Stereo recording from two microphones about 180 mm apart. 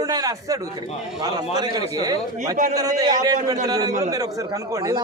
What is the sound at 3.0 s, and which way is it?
A man's voice, 20° right (ahead or behind).